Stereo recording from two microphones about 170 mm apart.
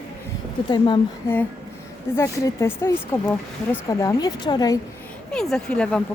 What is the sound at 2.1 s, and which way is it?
A woman's voice, 15° left (ahead or behind).